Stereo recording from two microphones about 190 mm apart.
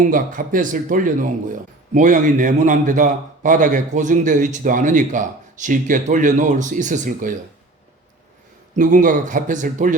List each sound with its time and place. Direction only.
0.0 s speech: 45° right (ahead or behind)
8.7 s speech: 45° right (ahead or behind)